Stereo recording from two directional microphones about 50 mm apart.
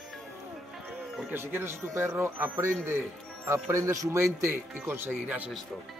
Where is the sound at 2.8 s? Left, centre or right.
Right.